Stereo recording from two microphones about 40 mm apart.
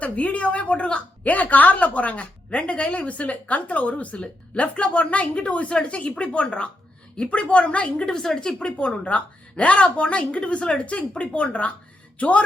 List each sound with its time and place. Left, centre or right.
0.0 s a woman's voice: left
1.3 s a woman's voice: left
8.0 s a woman's voice: centre; by 12.4 s left